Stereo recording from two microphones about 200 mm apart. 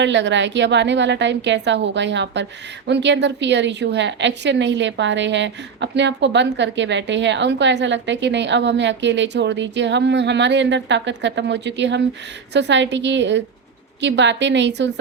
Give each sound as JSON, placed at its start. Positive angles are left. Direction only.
{"t": 0.0, "sound": "a woman's voice", "side_deg": -65}